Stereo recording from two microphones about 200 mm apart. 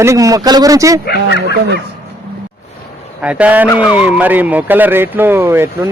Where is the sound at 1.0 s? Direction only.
55° left (ahead or behind).